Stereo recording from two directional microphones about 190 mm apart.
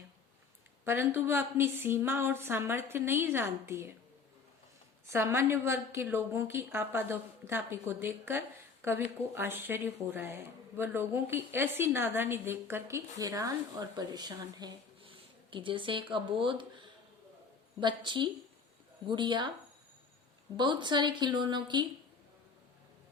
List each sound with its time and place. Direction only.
0.9 s speech: 10° right (ahead or behind)
5.0 s a woman's voice: 15° right (ahead or behind)
20.6 s a woman's voice: 25° right (ahead or behind)